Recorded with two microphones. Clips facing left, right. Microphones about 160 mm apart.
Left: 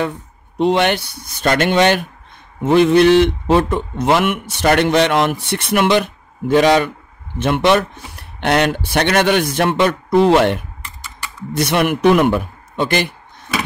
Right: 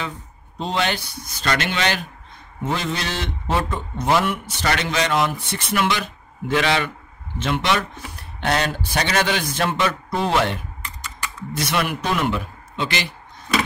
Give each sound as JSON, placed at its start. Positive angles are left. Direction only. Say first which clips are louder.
{"t": 0.6, "sound": "mantra", "louder": "left 9 dB", "side_deg": 65}
{"t": 6.5, "sound": "a man's voice", "louder": "left 8 dB", "side_deg": 45}
{"t": 7.3, "sound": "mantra", "louder": "left 8 dB", "side_deg": 60}